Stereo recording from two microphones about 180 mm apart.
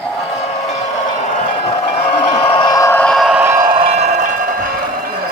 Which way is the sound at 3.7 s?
30° right (ahead or behind).